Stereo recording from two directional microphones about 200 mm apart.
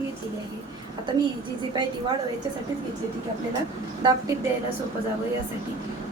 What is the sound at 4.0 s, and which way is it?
Speech, 20° right (ahead or behind).